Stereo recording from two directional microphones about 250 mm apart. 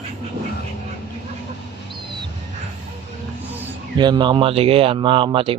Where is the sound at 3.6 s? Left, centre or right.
Centre.